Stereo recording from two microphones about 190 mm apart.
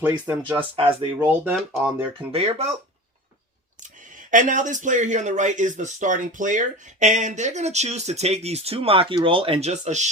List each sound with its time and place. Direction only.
0.0 s speech: 10° right (ahead or behind)
2.3 s speech: 30° right (ahead or behind)
3.8 s speech: 45° right (ahead or behind)